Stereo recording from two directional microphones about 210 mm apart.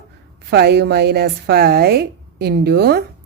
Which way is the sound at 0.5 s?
50° right (ahead or behind).